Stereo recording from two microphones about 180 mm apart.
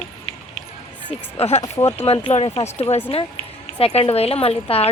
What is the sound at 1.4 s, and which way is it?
A woman's voice, 35° left (ahead or behind).